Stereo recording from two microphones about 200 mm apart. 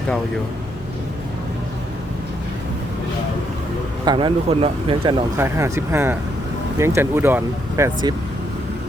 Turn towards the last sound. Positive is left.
turn(degrees=-10)  # may be behind; listen again after turning